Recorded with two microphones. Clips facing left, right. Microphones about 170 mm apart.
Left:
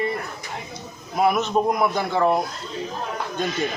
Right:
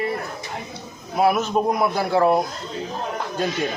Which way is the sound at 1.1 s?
5° right (ahead or behind).